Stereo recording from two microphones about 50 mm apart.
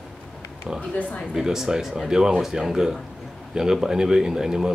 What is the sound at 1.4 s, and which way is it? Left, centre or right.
Speech, centre.